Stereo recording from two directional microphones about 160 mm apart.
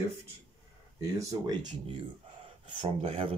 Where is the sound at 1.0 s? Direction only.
20° right (ahead or behind).